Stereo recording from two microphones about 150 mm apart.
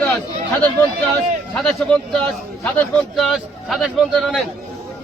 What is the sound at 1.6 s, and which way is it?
A man's voice, 5° left (ahead or behind).